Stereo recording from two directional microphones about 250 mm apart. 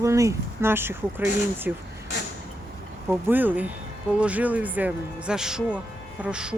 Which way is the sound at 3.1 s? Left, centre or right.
Centre.